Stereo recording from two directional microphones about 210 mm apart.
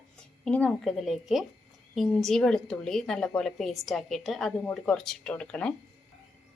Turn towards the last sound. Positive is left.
turn(degrees=5)  # may be behind; listen again after turning